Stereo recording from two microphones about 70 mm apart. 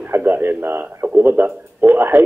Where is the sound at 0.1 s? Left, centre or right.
Right.